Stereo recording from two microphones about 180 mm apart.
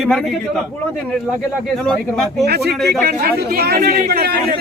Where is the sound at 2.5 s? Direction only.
65° right (ahead or behind).